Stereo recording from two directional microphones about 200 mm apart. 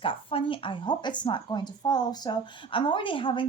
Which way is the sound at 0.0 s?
25° left (ahead or behind).